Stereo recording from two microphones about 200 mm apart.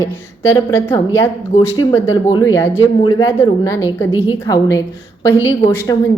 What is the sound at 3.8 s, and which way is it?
Speech, 10° right (ahead or behind).